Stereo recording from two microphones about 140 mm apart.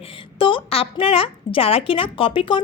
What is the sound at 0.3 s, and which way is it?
A woman's voice, 35° left (ahead or behind).